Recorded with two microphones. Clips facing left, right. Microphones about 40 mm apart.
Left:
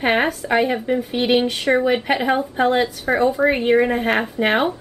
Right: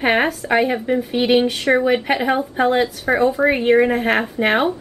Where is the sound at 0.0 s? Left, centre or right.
Centre.